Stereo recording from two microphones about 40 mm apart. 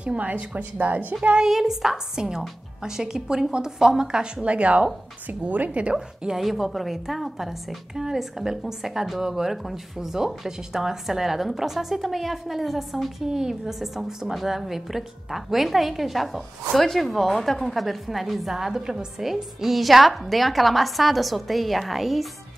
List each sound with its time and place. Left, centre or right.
0.0 s speech: right
1.4 s a woman's voice: centre; by 6.0 s right
6.3 s a woman's voice: centre
13.3 s a woman's voice: centre